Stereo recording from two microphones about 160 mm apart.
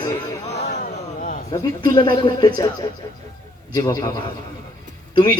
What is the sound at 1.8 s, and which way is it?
Speech, 25° left (ahead or behind).